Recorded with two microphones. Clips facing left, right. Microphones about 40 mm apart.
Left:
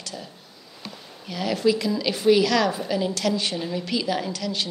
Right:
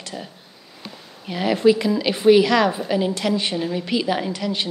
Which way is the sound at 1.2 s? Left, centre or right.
Right.